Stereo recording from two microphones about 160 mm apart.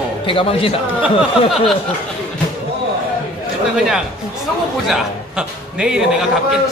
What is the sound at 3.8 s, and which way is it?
A man's voice, centre (ahead or behind).